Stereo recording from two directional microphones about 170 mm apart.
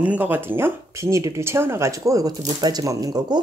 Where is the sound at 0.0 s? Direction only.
10° right (ahead or behind).